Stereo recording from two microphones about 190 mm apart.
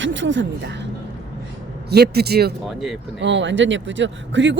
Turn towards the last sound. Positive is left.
turn(degrees=-70)  # may be behind; listen again after turning